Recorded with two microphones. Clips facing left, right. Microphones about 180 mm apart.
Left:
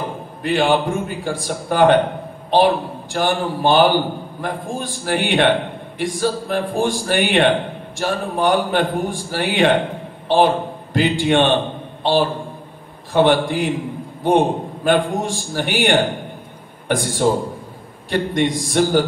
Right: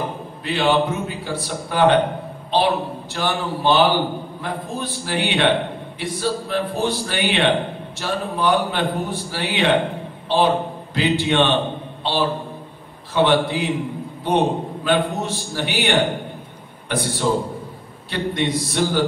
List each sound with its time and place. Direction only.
0.4 s a man's voice: 50° left (ahead or behind)
18.1 s a man's voice: 45° left (ahead or behind)